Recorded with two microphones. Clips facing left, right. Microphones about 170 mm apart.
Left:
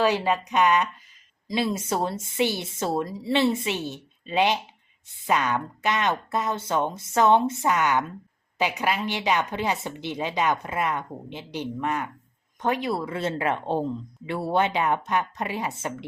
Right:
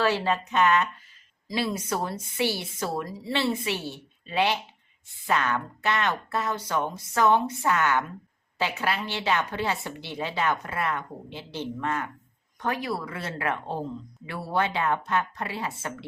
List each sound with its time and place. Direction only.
0.0 s a woman's voice: 15° left (ahead or behind)